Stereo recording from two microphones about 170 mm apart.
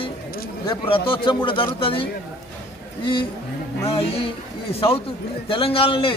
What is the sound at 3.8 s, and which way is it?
A man's voice, 35° left (ahead or behind).